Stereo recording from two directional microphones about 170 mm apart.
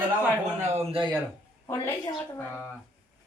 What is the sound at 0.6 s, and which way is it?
Speech, 40° right (ahead or behind).